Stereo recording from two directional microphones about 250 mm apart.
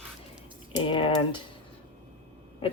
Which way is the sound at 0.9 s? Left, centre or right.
Centre.